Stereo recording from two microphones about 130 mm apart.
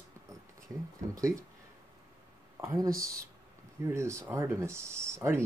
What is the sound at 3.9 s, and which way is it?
Speech, 20° right (ahead or behind).